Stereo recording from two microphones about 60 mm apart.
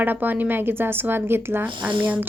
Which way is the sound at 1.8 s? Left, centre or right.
Right.